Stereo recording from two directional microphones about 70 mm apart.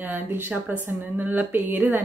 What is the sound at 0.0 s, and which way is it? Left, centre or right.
Speech, right.